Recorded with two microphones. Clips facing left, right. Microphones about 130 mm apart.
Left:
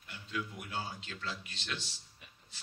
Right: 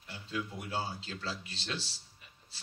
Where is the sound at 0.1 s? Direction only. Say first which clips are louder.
Right 2 dB; 35° right (ahead or behind).